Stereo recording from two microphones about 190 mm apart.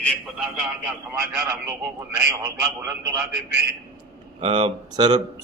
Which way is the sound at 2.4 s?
15° right (ahead or behind).